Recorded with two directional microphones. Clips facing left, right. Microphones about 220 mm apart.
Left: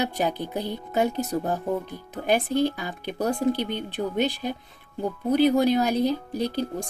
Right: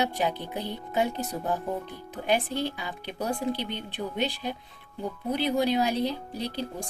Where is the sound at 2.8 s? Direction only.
45° left (ahead or behind).